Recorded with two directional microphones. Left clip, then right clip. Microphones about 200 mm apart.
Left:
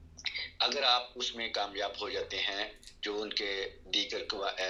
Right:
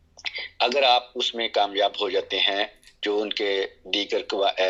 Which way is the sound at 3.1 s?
35° right (ahead or behind).